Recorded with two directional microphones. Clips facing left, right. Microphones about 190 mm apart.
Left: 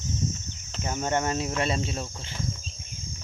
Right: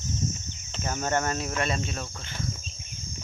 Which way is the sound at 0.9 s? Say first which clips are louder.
Left 1 dB; 20° left (ahead or behind).